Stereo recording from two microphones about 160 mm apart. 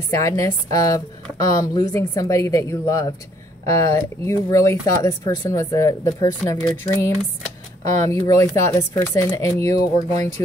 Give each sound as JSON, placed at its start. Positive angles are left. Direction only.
{"t": 0.1, "sound": "speech", "side_deg": 20}
{"t": 8.1, "sound": "speech", "side_deg": 20}